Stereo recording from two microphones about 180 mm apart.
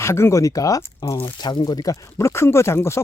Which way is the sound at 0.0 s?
15° left (ahead or behind).